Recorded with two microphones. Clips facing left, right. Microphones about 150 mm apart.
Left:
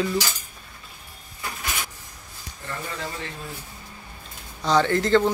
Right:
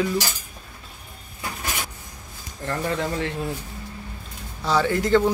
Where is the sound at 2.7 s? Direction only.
70° right (ahead or behind).